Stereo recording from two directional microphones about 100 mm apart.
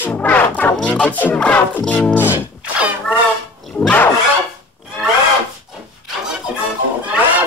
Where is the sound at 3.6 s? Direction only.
10° left (ahead or behind).